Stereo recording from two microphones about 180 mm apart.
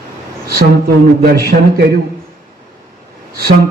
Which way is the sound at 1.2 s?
55° right (ahead or behind).